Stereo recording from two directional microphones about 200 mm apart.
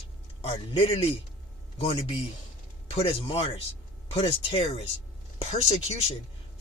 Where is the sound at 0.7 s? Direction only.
30° left (ahead or behind).